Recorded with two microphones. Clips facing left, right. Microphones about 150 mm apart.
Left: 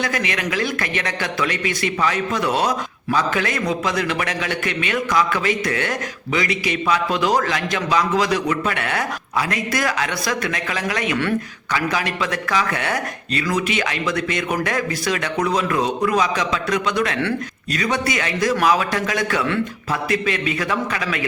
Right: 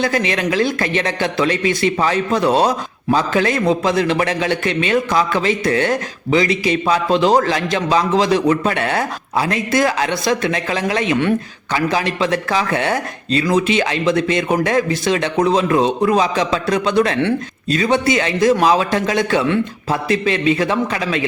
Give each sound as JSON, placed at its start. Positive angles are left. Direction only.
{"t": 0.0, "sound": "a man's voice", "side_deg": -30}